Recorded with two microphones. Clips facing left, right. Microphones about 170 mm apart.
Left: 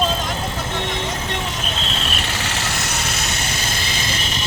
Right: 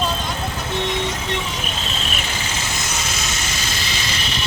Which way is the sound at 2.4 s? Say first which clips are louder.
Left 2 dB; 75° left (ahead or behind).